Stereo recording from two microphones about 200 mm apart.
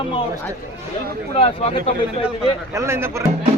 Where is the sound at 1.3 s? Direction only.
30° left (ahead or behind).